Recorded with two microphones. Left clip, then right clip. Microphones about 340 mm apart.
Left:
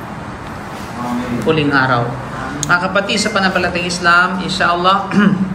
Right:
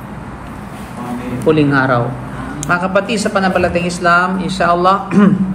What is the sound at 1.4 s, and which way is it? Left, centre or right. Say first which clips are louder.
Speech: right 2 dB; centre.